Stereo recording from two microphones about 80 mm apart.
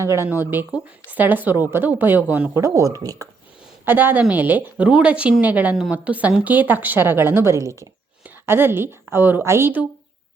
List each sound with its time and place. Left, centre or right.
0.0 s speech: right
0.3 s a woman's voice: right
2.6 s speech: right
3.8 s a woman's voice: right
8.4 s a woman's voice: right